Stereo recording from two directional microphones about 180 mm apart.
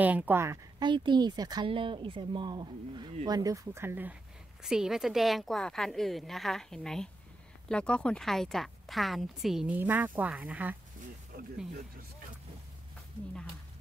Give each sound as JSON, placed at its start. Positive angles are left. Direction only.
{"t": 0.0, "sound": "speech", "side_deg": -10}
{"t": 3.3, "sound": "speech", "side_deg": -20}
{"t": 11.3, "sound": "snake", "side_deg": -60}